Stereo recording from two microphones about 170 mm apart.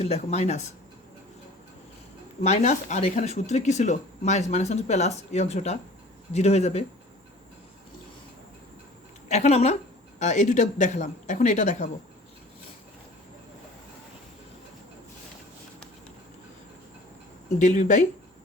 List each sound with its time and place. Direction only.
0.0 s speech: 40° left (ahead or behind)
2.4 s speech: 40° left (ahead or behind)
9.3 s a man's voice: 40° left (ahead or behind)
17.6 s a man's voice: 45° left (ahead or behind)